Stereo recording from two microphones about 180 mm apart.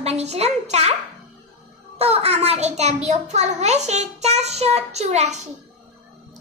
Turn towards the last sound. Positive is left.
turn(degrees=-40)  # may be behind; listen again after turning